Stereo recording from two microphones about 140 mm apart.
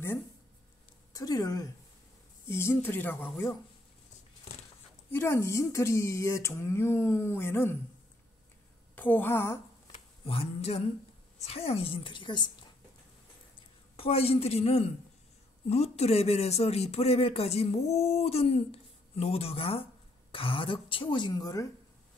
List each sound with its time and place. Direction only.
1.1 s speech: 25° left (ahead or behind)
5.1 s speech: 20° left (ahead or behind)
8.9 s speech: 15° left (ahead or behind)
9.9 s a sound: 40° left (ahead or behind)
11.4 s speech: 45° left (ahead or behind)
13.9 s speech: 45° left (ahead or behind); by 21.6 s 25° left (ahead or behind)